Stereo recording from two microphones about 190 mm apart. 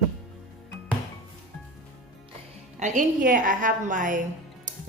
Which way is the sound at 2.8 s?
40° right (ahead or behind).